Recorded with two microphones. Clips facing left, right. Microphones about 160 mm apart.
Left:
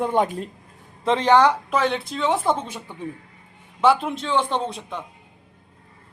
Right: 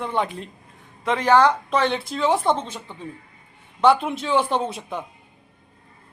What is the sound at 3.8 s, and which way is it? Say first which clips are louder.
A man's voice: right 1 dB; centre (ahead or behind).